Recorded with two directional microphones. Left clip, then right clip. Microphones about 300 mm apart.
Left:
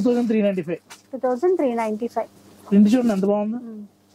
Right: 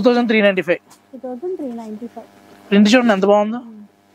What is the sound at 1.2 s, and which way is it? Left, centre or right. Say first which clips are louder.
Speech: left 6 dB; centre.